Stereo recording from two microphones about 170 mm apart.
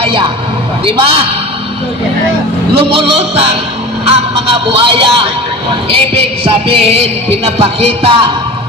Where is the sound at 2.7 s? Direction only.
30° right (ahead or behind).